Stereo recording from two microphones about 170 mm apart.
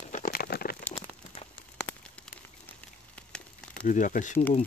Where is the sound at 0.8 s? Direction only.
10° left (ahead or behind).